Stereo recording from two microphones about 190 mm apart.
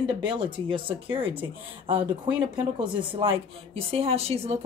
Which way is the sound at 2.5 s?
25° right (ahead or behind).